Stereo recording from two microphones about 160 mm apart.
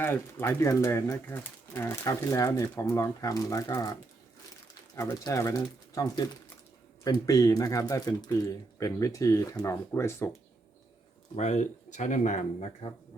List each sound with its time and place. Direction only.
0.0 s speech: 15° left (ahead or behind)
4.9 s speech: 20° left (ahead or behind)
11.3 s speech: 45° left (ahead or behind)